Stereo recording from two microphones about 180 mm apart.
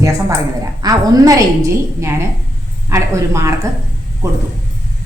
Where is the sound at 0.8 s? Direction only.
20° right (ahead or behind).